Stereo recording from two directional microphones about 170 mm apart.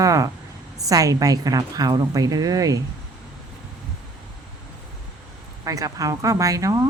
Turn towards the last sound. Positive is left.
turn(degrees=-20)  # may be behind; listen again after turning